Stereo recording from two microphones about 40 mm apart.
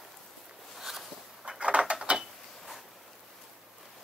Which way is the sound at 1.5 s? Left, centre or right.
Right.